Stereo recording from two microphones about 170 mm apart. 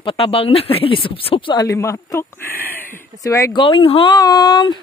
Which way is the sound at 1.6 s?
15° left (ahead or behind).